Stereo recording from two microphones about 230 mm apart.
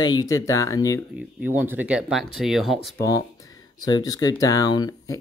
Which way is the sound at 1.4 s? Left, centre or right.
Centre.